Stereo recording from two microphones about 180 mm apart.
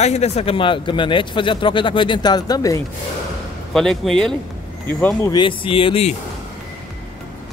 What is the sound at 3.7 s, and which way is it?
Speech, centre (ahead or behind).